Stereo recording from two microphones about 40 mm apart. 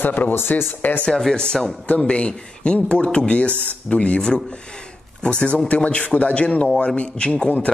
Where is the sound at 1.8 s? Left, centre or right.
Left.